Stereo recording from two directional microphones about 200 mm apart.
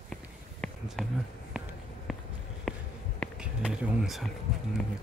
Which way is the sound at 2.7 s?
Centre (ahead or behind).